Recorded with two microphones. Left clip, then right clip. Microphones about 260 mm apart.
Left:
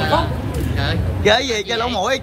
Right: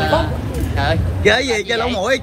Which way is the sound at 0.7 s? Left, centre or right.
Centre.